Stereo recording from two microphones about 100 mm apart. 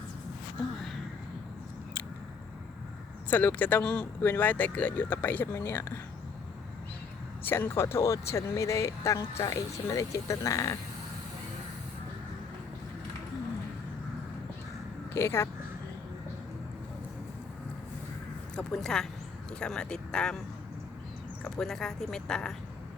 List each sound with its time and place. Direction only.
3.2 s speech: 15° left (ahead or behind)
7.4 s speech: 20° left (ahead or behind)
15.1 s speech: 25° left (ahead or behind)
18.5 s speech: 5° left (ahead or behind)
21.4 s speech: 5° left (ahead or behind)